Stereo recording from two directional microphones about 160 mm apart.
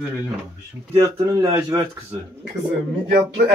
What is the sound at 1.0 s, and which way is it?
Speech, 20° right (ahead or behind).